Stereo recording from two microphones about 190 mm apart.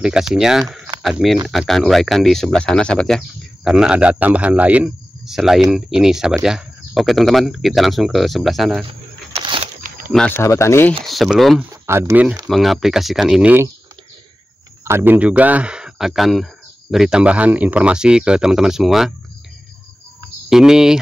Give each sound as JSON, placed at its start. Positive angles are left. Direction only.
{"t": 0.0, "sound": "speech", "side_deg": -5}
{"t": 9.3, "sound": "a sound", "side_deg": -30}
{"t": 9.8, "sound": "a sound", "side_deg": -50}
{"t": 10.1, "sound": "speech", "side_deg": 10}
{"t": 11.1, "sound": "speech", "side_deg": 0}
{"t": 11.7, "sound": "speech", "side_deg": -15}
{"t": 12.4, "sound": "speech", "side_deg": 0}
{"t": 14.9, "sound": "speech", "side_deg": -10}
{"t": 20.4, "sound": "speech", "side_deg": -5}